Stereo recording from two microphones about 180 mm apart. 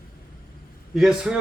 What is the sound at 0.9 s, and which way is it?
Speech, centre (ahead or behind).